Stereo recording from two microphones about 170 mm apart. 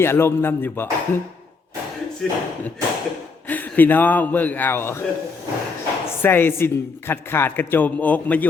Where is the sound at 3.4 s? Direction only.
10° left (ahead or behind).